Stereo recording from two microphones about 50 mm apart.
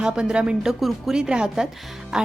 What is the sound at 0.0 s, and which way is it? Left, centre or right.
Speech, centre.